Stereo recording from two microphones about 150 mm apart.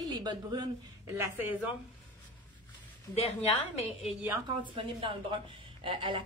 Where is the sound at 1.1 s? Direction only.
15° right (ahead or behind).